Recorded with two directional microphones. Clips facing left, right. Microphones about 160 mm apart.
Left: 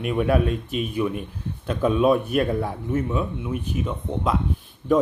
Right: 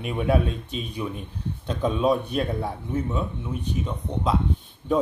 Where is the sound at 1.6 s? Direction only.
5° left (ahead or behind).